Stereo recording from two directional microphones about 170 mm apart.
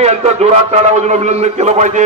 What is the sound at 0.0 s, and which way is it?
A man's voice, 40° right (ahead or behind).